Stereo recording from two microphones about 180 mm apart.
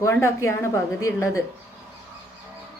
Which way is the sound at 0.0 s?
15° left (ahead or behind).